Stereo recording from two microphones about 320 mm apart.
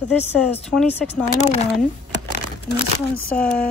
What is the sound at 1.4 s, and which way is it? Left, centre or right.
Speech, left.